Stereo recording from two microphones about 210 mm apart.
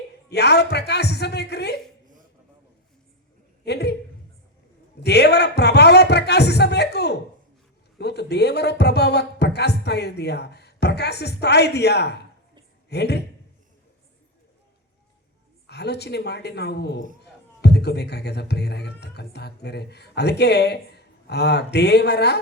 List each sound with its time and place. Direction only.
0.3 s speech: 50° left (ahead or behind)
3.6 s a sound: 50° left (ahead or behind)
5.0 s speech: 50° left (ahead or behind)
15.6 s speech: 50° left (ahead or behind)